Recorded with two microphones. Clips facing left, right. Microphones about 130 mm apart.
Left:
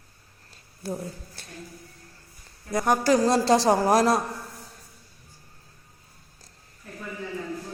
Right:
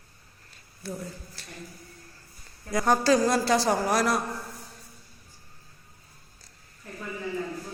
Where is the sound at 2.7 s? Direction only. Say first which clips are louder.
Left 1 dB; 15° left (ahead or behind).